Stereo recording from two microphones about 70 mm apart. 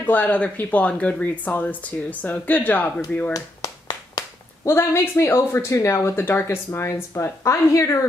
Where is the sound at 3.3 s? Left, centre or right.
Left.